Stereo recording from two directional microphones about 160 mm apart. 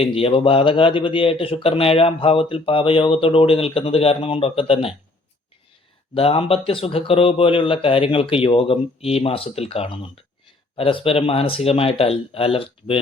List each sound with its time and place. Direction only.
0.0 s speech: 35° left (ahead or behind)
6.1 s speech: 35° left (ahead or behind)